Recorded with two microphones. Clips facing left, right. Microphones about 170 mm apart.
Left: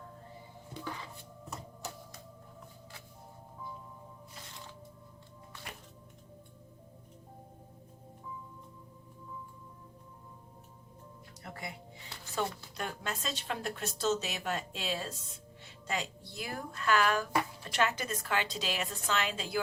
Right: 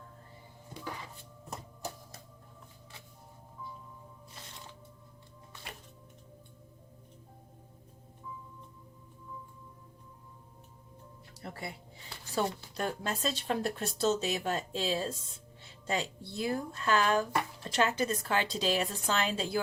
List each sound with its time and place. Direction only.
11.4 s a woman's voice: 35° right (ahead or behind)